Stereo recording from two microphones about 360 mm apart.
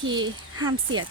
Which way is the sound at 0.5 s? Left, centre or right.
Right.